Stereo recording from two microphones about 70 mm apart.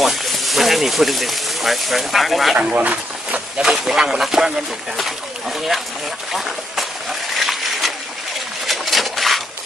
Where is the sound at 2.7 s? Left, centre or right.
Right.